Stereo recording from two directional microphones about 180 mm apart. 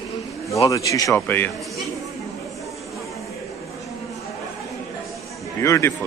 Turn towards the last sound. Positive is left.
turn(degrees=15)  # may be behind; listen again after turning